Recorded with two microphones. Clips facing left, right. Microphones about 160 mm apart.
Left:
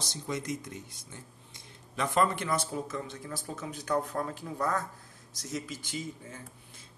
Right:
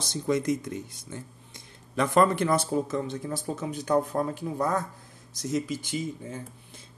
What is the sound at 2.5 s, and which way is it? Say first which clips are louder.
Speech: right 7 dB; 25° right (ahead or behind).